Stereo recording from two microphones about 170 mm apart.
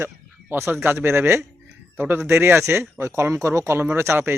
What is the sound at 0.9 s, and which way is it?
Speech, 15° right (ahead or behind).